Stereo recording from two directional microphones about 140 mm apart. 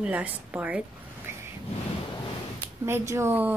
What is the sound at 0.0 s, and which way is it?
Speech, 10° right (ahead or behind).